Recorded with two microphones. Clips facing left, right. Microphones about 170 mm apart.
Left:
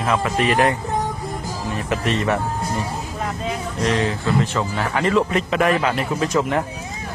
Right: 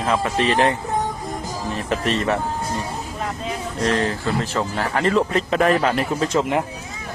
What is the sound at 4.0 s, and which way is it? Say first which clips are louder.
Speech: left 2 dB; 40° right (ahead or behind).